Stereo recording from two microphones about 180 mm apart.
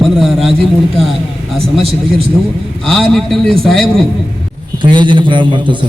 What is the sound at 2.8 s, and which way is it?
A man's voice, centre (ahead or behind).